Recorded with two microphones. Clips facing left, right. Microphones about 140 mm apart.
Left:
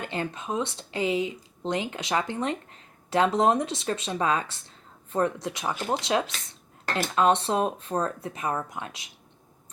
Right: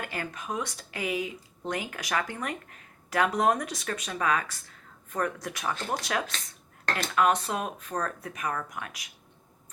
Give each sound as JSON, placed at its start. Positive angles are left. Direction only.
{"t": 0.0, "sound": "speech", "side_deg": 25}